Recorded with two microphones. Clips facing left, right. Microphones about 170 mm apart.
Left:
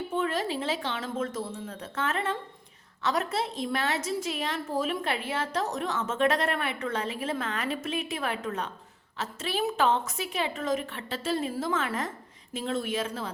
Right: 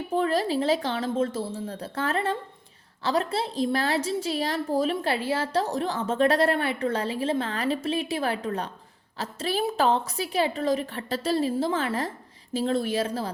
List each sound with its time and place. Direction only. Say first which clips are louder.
0.1 s a woman's voice: right 6 dB; 35° right (ahead or behind)